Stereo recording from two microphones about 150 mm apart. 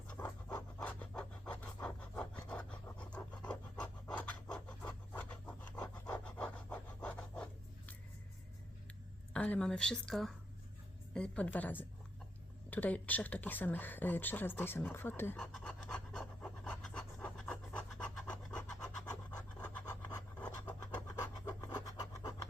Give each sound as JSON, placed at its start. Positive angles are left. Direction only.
{"t": 0.1, "sound": "pant", "side_deg": 10}
{"t": 0.8, "sound": "a sound", "side_deg": 10}
{"t": 9.3, "sound": "speech", "side_deg": 5}
{"t": 15.4, "sound": "pant", "side_deg": 5}
{"t": 19.4, "sound": "scratch", "side_deg": 10}
{"t": 19.8, "sound": "a sound", "side_deg": 25}
{"t": 20.9, "sound": "scratch", "side_deg": 25}